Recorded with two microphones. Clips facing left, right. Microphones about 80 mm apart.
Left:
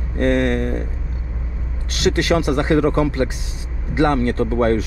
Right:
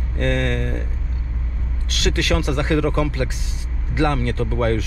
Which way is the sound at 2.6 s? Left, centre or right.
Left.